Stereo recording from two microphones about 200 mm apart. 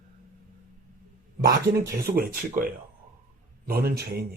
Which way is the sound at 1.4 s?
15° right (ahead or behind).